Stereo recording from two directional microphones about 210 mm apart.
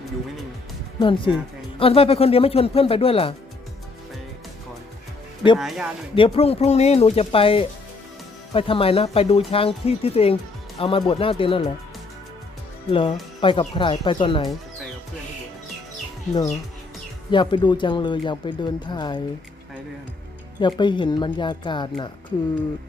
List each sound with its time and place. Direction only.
0.9 s speech: 25° left (ahead or behind)
5.5 s speech: centre (ahead or behind)
6.1 s speech: 25° left (ahead or behind)
12.9 s speech: 25° left (ahead or behind)
17.3 s speech: 20° left (ahead or behind)
20.6 s speech: 20° left (ahead or behind)